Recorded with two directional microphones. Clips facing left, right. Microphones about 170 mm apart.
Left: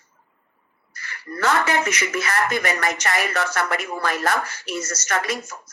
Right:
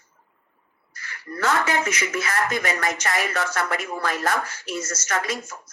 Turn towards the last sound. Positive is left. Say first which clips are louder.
# left 2 dB
turn(degrees=70)  # may be behind; listen again after turning